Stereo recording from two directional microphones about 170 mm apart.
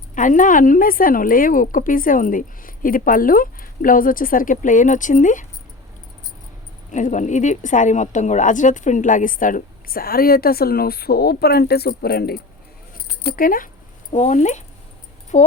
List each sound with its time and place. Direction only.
0.1 s a woman's voice: 50° left (ahead or behind)
6.9 s a woman's voice: 45° left (ahead or behind)